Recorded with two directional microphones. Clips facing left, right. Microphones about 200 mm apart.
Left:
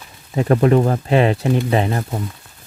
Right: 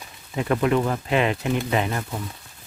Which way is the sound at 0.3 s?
40° left (ahead or behind).